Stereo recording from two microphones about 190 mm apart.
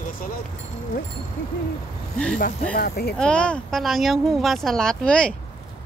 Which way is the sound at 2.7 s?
55° left (ahead or behind).